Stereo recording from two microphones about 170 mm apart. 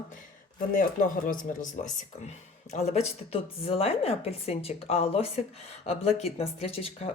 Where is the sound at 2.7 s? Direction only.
40° left (ahead or behind).